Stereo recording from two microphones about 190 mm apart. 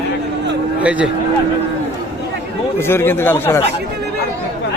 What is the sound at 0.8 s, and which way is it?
Speech, 5° right (ahead or behind).